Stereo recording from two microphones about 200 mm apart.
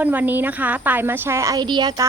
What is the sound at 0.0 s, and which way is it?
Speech, 10° right (ahead or behind).